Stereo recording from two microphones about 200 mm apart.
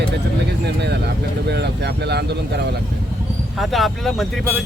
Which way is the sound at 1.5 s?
55° right (ahead or behind).